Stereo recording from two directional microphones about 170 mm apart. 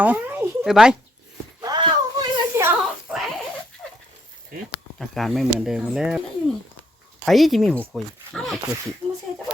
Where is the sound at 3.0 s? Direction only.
Centre (ahead or behind).